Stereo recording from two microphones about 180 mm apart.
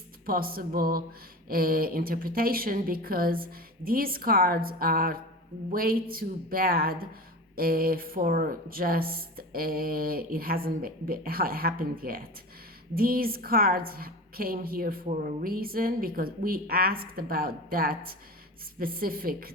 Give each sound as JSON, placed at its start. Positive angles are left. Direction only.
{"t": 0.3, "sound": "a woman's voice", "side_deg": -55}